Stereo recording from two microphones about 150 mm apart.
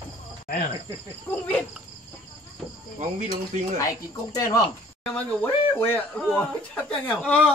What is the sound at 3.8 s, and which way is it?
Speech, 25° left (ahead or behind).